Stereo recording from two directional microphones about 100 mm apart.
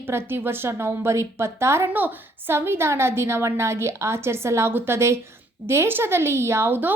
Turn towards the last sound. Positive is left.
turn(degrees=-20)  # may be behind; listen again after turning